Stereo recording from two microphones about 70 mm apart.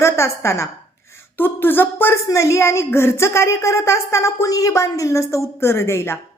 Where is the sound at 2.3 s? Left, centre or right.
Left.